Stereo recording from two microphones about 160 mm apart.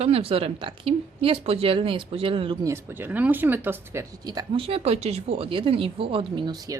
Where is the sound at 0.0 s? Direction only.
35° right (ahead or behind).